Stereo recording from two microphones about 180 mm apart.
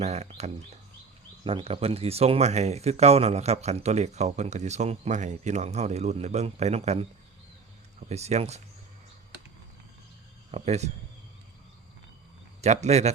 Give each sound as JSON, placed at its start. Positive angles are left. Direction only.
{"t": 0.0, "sound": "speech", "side_deg": -35}
{"t": 8.1, "sound": "speech", "side_deg": -35}
{"t": 10.5, "sound": "speech", "side_deg": -40}
{"t": 12.6, "sound": "speech", "side_deg": -40}